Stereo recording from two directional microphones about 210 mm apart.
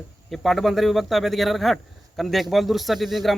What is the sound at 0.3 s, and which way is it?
A man's voice, centre (ahead or behind).